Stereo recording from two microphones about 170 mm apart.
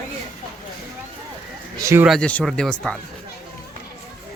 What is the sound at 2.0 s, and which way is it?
Speech, 5° left (ahead or behind).